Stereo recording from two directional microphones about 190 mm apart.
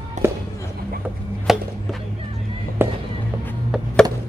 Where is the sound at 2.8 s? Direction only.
10° right (ahead or behind).